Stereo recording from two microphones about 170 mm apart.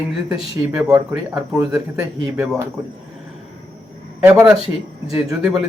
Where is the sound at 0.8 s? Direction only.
20° right (ahead or behind).